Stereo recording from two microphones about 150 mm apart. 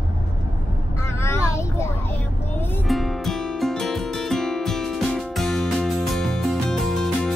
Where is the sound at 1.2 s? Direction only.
20° left (ahead or behind).